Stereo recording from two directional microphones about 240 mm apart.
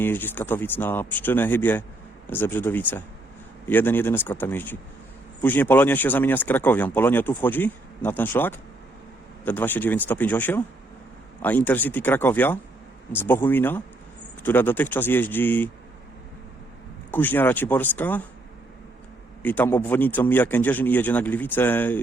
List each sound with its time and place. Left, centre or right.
0.0 s speech: centre
17.1 s speech: centre
19.4 s speech: centre